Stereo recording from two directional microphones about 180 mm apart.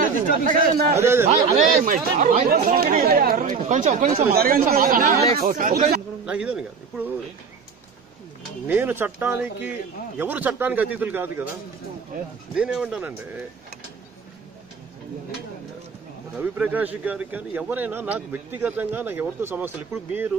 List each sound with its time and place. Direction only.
0.5 s speech: 60° right (ahead or behind)
0.9 s a man's voice: 15° right (ahead or behind)
1.5 s speech: 45° right (ahead or behind)
4.3 s speech: 55° right (ahead or behind)
6.2 s speech: 5° right (ahead or behind)
8.6 s a man's voice: 10° right (ahead or behind)
12.5 s speech: 5° right (ahead or behind)
16.3 s a man's voice: 10° right (ahead or behind)